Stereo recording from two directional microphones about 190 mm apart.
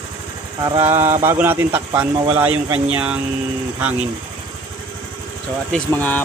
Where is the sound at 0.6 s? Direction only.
25° right (ahead or behind).